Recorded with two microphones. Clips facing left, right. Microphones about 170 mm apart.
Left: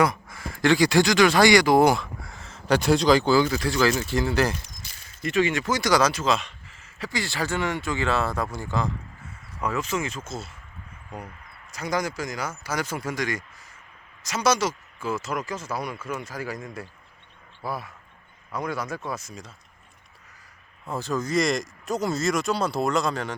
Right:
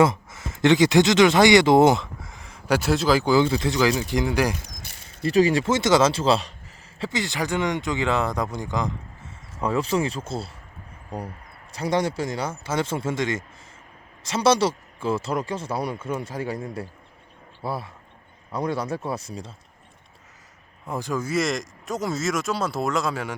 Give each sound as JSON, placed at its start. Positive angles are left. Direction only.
{"t": 0.0, "sound": "speech", "side_deg": -25}
{"t": 3.3, "sound": "speech", "side_deg": -25}
{"t": 4.6, "sound": "a sound", "side_deg": -60}
{"t": 5.2, "sound": "speech", "side_deg": -35}
{"t": 7.0, "sound": "speech", "side_deg": -20}
{"t": 20.8, "sound": "speech", "side_deg": -15}